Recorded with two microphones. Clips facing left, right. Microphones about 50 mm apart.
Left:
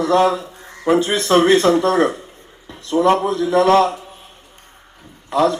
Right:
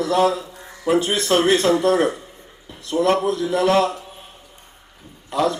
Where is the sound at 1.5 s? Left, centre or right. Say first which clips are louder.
Left 3 dB; left.